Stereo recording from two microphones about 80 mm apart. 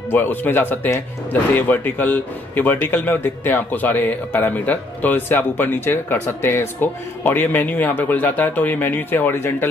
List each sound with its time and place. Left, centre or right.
0.1 s speech: left